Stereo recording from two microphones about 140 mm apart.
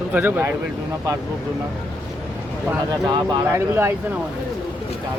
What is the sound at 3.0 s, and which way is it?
Speech, 30° right (ahead or behind).